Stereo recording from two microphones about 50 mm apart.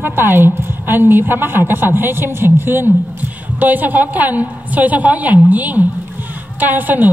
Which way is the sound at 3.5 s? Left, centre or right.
Right.